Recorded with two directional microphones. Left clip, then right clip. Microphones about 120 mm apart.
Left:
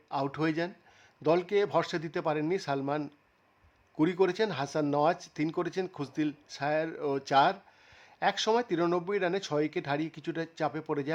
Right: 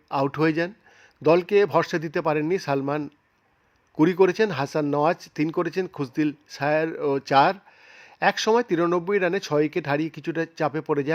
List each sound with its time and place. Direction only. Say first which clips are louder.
0.1 s speech: right 8 dB; 35° right (ahead or behind)